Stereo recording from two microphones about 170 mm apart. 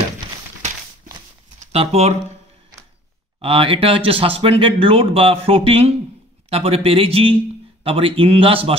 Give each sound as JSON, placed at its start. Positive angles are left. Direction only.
{"t": 1.6, "sound": "speech", "side_deg": -35}
{"t": 3.3, "sound": "speech", "side_deg": -30}